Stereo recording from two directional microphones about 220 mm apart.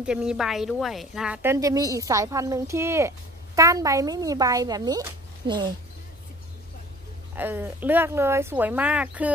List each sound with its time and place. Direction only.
0.0 s a woman's voice: 5° right (ahead or behind)
7.3 s a woman's voice: 10° right (ahead or behind)